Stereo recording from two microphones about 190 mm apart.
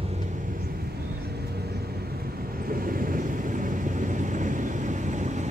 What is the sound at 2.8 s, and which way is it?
Vehicle, 45° right (ahead or behind).